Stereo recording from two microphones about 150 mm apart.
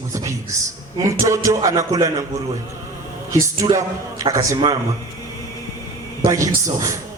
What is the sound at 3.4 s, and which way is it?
Speech, 20° right (ahead or behind).